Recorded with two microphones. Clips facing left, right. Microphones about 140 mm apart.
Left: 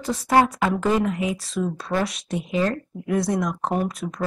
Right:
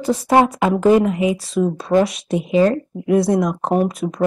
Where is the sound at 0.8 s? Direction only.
5° right (ahead or behind).